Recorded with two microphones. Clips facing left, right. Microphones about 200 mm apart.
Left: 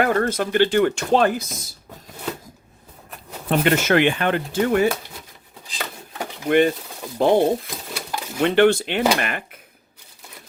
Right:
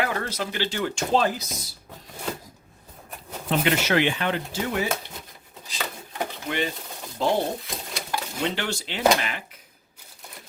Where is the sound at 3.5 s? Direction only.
50° left (ahead or behind).